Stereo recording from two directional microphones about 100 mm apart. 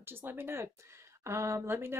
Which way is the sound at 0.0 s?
20° right (ahead or behind).